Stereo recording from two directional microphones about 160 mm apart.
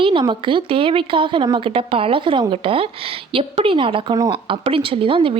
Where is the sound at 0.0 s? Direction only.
30° right (ahead or behind).